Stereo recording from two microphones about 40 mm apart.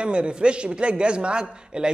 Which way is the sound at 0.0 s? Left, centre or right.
Right.